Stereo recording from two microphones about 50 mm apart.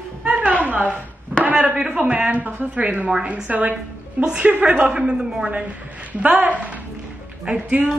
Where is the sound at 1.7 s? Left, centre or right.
Centre.